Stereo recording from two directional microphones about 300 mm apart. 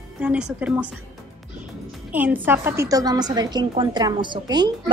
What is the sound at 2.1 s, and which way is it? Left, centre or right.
A woman's voice, centre.